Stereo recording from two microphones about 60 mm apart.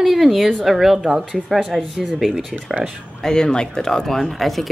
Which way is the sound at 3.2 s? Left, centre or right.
Centre.